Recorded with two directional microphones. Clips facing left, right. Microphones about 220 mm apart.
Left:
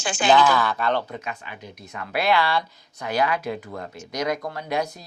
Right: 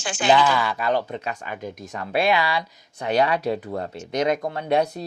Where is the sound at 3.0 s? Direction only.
35° right (ahead or behind).